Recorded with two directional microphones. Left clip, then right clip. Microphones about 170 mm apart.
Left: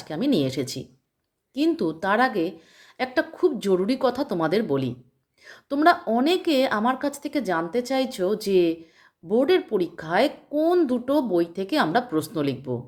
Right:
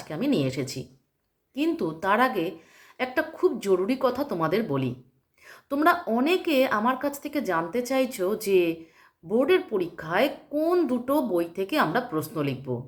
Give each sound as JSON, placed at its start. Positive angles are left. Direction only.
{"t": 0.1, "sound": "speech", "side_deg": 40}